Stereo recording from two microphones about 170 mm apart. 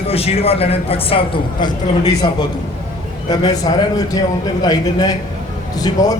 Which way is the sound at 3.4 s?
20° left (ahead or behind).